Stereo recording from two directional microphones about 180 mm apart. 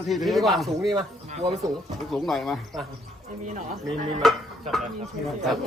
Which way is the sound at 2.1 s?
Centre (ahead or behind).